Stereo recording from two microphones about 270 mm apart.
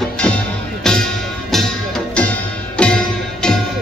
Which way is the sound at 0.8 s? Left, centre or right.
Centre.